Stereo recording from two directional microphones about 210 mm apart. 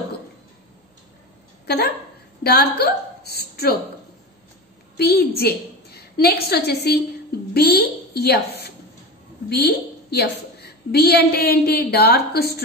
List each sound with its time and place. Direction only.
1.7 s a woman's voice: 50° left (ahead or behind)
4.9 s a woman's voice: 50° left (ahead or behind)